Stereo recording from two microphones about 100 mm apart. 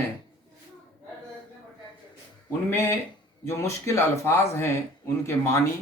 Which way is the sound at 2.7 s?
25° left (ahead or behind).